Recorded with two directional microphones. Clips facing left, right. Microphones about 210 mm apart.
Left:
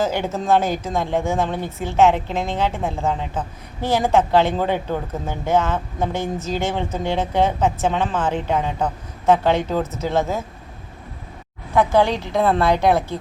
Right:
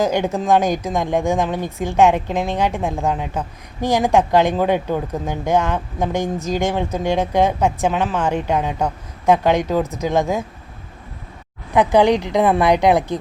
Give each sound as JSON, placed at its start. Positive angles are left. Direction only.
{"t": 0.0, "sound": "a woman's voice", "side_deg": -15}
{"t": 11.7, "sound": "a woman's voice", "side_deg": -15}